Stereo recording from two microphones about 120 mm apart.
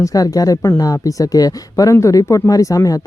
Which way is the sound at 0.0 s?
30° left (ahead or behind).